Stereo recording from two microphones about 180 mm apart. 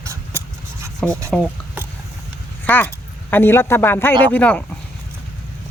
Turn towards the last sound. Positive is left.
turn(degrees=5)  # may be behind; listen again after turning